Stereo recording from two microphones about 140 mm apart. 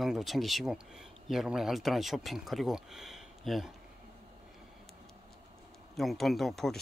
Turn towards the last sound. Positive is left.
turn(degrees=0)  # may be behind; listen again after turning